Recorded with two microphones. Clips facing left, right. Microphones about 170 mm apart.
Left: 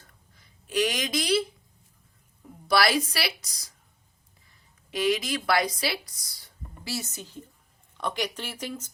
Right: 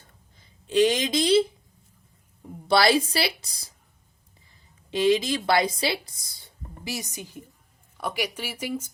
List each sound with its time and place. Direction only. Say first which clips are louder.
0.3 s speech: right 6 dB; 25° right (ahead or behind)
2.6 s a woman's voice: right 3 dB; 25° right (ahead or behind)
4.9 s speech: right 5 dB; 25° right (ahead or behind); by 8.9 s 10° right (ahead or behind)